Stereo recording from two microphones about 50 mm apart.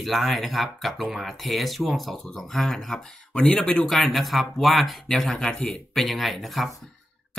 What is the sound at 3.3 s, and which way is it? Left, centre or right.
Speech, centre.